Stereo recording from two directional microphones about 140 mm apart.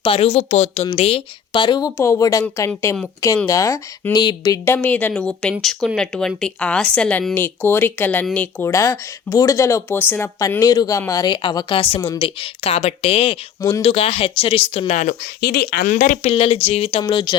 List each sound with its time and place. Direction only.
0.0 s speech: 40° left (ahead or behind)
2.0 s speech: 20° left (ahead or behind)
8.7 s speech: 25° left (ahead or behind)
12.2 s speech: 45° left (ahead or behind)
13.6 s speech: 25° left (ahead or behind)
13.8 s speech: 45° left (ahead or behind)
15.0 s speech: 90° left; by 16.3 s 60° left (ahead or behind)
16.3 s speech: 40° left (ahead or behind)
17.0 s speech: 30° left (ahead or behind)